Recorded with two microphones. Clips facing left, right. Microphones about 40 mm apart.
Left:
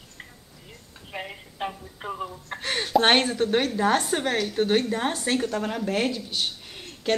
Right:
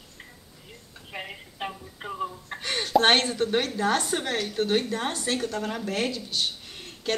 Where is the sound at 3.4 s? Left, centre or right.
Centre.